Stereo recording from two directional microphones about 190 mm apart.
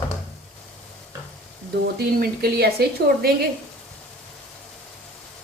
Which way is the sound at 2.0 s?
55° right (ahead or behind).